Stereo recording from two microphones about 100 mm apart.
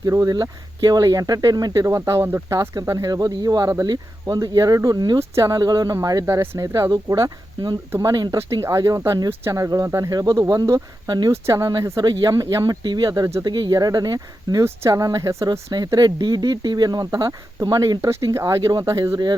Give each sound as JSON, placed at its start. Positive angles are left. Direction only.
{"t": 0.0, "sound": "speech", "side_deg": -35}
{"t": 6.6, "sound": "speech", "side_deg": -35}